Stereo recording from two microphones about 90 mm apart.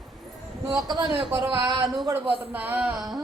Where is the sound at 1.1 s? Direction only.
75° right (ahead or behind).